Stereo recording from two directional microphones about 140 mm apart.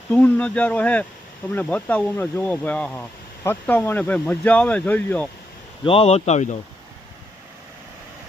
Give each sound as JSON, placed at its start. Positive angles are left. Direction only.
{"t": 0.1, "sound": "speech", "side_deg": 10}
{"t": 5.8, "sound": "speech", "side_deg": 40}